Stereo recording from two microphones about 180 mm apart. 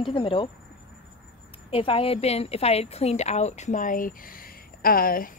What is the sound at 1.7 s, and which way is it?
A woman's voice, 30° left (ahead or behind).